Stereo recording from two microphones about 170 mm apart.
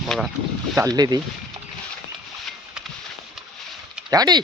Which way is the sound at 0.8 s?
20° right (ahead or behind).